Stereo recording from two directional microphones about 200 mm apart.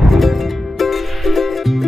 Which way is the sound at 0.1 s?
Centre (ahead or behind).